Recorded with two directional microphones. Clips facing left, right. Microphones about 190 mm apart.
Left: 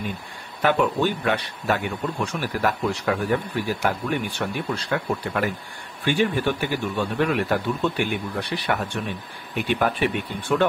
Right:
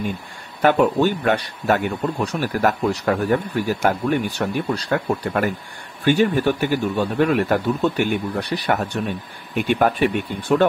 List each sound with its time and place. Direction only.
0.6 s a man's voice: 45° right (ahead or behind)